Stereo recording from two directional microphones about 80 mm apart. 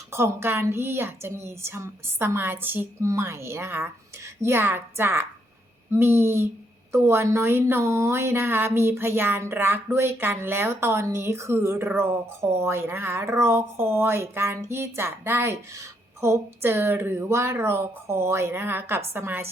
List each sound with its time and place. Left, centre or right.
0.1 s a woman's voice: right